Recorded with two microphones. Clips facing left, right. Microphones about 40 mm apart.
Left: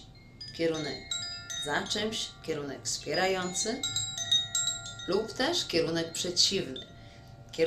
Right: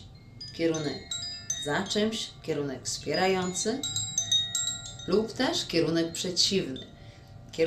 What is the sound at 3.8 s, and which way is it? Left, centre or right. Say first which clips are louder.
Music: right 1 dB; centre.